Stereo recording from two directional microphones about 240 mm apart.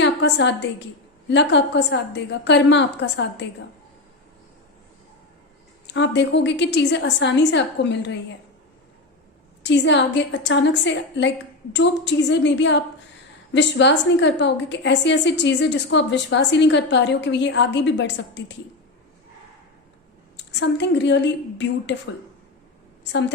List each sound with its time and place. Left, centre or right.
0.0 s a woman's voice: left
5.9 s a woman's voice: left
9.6 s a woman's voice: left
20.3 s a woman's voice: left